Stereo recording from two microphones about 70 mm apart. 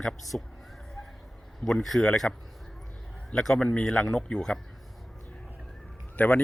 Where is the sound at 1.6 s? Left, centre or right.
Centre.